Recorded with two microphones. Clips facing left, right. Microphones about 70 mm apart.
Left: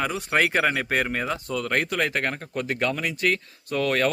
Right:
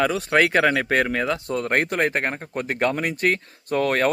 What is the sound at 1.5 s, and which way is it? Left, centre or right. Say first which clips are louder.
A man's voice: right 2 dB; right.